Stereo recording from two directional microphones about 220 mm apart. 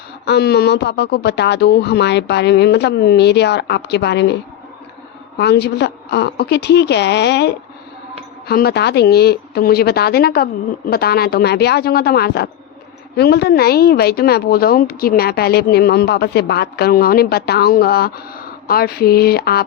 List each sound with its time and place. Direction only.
0.3 s a woman's voice: 45° left (ahead or behind)
5.4 s a woman's voice: 50° left (ahead or behind)